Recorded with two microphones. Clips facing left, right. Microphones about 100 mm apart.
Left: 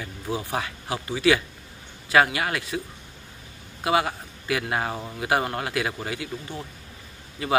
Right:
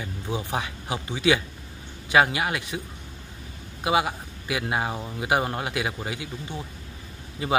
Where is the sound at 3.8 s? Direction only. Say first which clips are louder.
Even; 15° right (ahead or behind).